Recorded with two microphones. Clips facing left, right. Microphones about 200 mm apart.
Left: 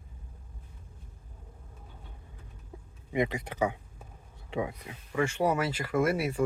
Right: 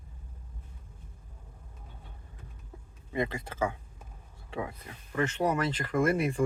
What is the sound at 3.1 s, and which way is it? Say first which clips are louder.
Speech: left 3 dB; 15° left (ahead or behind).